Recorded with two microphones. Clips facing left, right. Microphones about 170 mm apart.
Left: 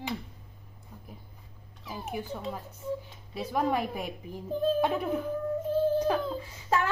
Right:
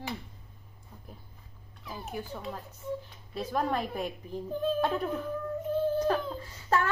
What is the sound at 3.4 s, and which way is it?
A woman's voice, 10° left (ahead or behind).